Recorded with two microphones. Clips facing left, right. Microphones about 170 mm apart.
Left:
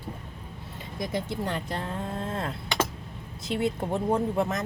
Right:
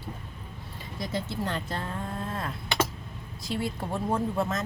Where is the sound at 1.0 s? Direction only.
15° left (ahead or behind).